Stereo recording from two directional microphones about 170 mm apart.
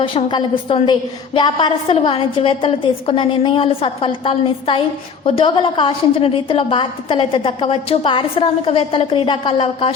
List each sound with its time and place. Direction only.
0.0 s a woman's voice: 30° left (ahead or behind)